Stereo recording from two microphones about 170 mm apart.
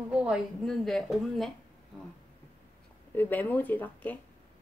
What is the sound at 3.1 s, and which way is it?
Speech, 10° left (ahead or behind).